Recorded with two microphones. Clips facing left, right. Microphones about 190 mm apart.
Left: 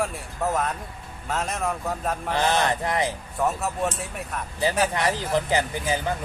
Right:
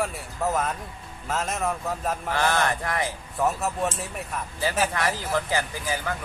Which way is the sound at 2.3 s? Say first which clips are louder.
Left 2 dB; 20° left (ahead or behind).